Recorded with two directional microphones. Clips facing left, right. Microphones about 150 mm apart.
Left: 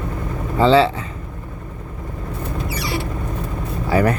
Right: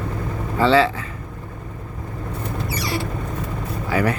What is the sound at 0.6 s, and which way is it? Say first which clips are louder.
Speech: left 3 dB; 30° left (ahead or behind).